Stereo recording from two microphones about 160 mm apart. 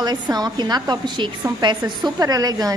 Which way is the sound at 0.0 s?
25° right (ahead or behind).